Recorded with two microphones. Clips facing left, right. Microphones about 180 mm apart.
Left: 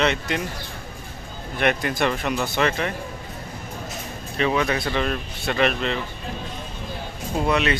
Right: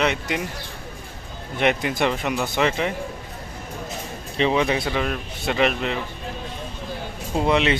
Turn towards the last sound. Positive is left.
turn(degrees=-20)  # may be behind; listen again after turning